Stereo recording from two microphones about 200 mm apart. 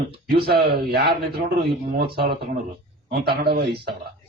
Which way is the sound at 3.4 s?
55° right (ahead or behind).